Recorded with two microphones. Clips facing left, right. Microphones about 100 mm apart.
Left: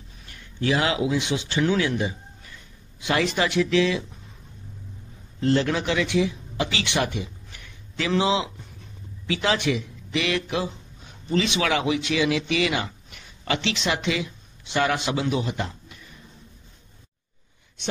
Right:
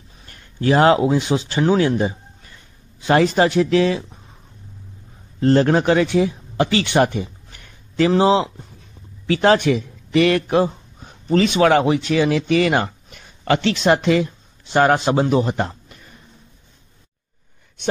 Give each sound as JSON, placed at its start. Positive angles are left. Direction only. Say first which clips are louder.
{"t": 0.3, "sound": "speech", "louder": "right 6 dB", "side_deg": -40}
{"t": 5.4, "sound": "speech", "louder": "right 7 dB", "side_deg": -40}